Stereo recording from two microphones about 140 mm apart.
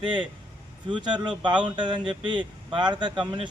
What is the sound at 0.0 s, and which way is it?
Speech, 35° right (ahead or behind).